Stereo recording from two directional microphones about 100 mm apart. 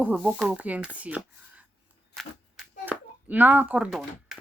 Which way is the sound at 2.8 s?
15° right (ahead or behind).